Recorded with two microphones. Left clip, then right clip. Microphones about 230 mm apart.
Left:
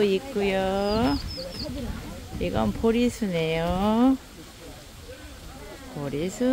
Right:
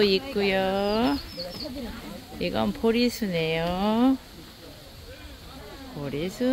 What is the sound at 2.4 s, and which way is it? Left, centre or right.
Speech, centre.